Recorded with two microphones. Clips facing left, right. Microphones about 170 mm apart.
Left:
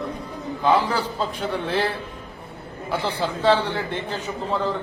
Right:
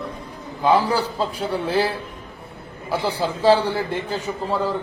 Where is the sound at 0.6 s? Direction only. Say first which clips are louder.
Right 2 dB; 10° right (ahead or behind).